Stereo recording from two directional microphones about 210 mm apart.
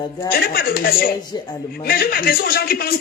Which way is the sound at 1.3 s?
20° left (ahead or behind).